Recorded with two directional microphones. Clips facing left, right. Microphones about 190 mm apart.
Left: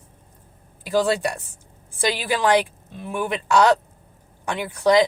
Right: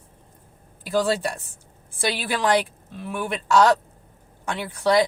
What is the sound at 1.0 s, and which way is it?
Speech, 15° left (ahead or behind).